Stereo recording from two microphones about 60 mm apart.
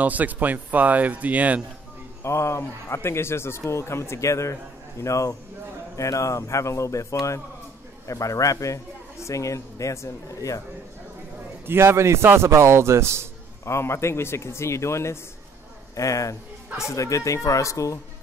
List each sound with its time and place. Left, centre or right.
0.0 s speech: right
2.2 s a man's voice: left
8.1 s a man's voice: left
11.6 s speech: right
13.7 s speech: left
16.0 s a man's voice: left